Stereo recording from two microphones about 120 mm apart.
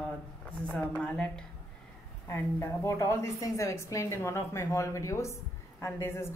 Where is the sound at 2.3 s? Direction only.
25° left (ahead or behind).